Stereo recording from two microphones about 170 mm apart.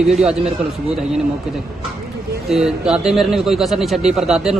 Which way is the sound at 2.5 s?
Centre (ahead or behind).